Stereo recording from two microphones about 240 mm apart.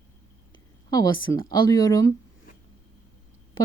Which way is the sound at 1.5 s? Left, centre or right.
Centre.